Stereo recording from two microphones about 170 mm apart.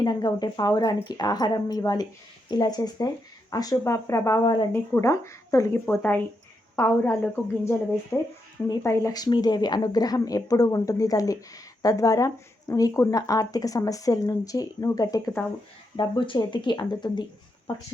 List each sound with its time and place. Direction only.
0.0 s speech: 25° left (ahead or behind)